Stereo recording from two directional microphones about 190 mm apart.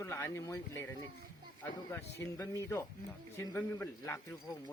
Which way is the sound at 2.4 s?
15° left (ahead or behind).